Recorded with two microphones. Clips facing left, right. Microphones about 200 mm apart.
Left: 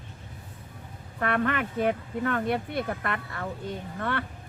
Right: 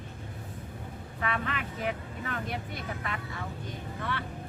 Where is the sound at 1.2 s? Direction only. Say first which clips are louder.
Left 7 dB; 60° left (ahead or behind).